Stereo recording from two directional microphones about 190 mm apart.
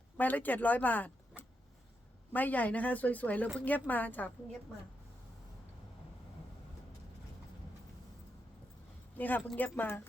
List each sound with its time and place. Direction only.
0.2 s a woman's voice: 10° left (ahead or behind)
2.3 s a woman's voice: 10° left (ahead or behind)
9.1 s a woman's voice: 10° left (ahead or behind)